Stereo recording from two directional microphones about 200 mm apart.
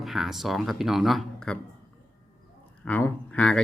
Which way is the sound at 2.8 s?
10° left (ahead or behind).